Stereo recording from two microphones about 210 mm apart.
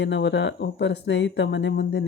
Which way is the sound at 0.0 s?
60° left (ahead or behind).